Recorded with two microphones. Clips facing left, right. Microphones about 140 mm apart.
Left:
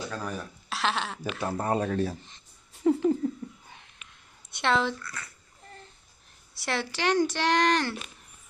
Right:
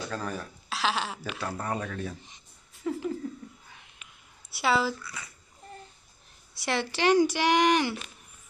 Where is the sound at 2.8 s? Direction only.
30° left (ahead or behind).